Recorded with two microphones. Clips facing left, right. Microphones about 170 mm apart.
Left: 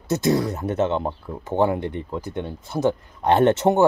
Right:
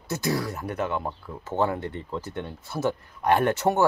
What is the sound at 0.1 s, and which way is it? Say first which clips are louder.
Speech: left 7 dB; 20° left (ahead or behind).